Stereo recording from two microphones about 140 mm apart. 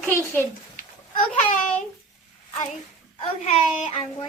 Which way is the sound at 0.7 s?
65° left (ahead or behind).